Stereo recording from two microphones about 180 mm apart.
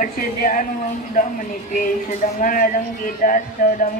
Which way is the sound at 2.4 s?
50° left (ahead or behind).